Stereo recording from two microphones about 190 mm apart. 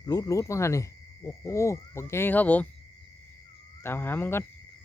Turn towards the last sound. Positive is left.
turn(degrees=10)  # may be behind; listen again after turning